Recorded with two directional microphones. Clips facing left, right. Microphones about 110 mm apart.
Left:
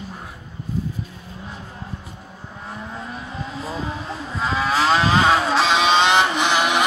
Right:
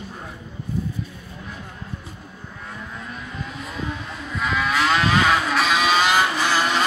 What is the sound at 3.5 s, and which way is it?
Vehicle, 30° left (ahead or behind).